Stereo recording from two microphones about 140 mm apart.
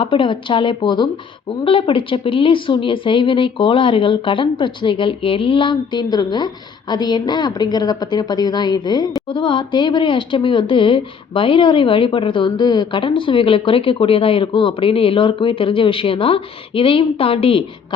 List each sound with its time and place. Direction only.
0.0 s speech: 40° left (ahead or behind)